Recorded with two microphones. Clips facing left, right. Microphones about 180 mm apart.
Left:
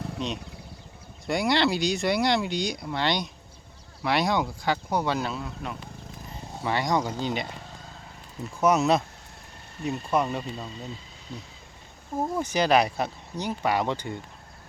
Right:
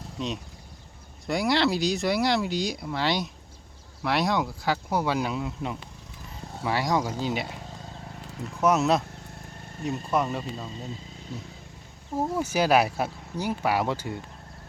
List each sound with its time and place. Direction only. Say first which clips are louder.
0.2 s speech: even; centre (ahead or behind); by 5.7 s 15° right (ahead or behind)
6.6 s speech: even; 5° right (ahead or behind)
8.6 s speech: left 1 dB; centre (ahead or behind)
12.4 s speech: even; 5° right (ahead or behind)